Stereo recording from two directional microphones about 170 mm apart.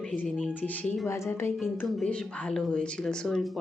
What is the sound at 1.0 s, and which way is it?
A woman's voice, 15° left (ahead or behind).